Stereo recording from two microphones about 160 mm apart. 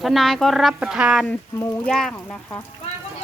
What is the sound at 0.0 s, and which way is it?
Speech, centre (ahead or behind).